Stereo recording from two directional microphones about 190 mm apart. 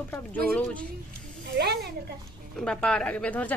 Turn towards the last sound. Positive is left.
turn(degrees=10)  # may be behind; listen again after turning